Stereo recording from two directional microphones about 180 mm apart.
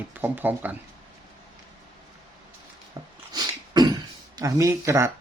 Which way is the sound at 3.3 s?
25° right (ahead or behind).